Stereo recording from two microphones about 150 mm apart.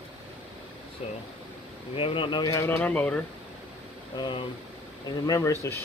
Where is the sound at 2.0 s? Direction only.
35° left (ahead or behind); by 3.2 s 10° left (ahead or behind).